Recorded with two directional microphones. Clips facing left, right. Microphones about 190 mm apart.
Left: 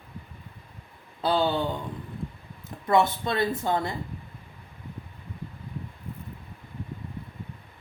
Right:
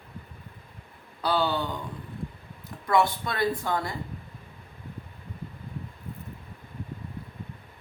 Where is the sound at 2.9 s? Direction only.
25° left (ahead or behind).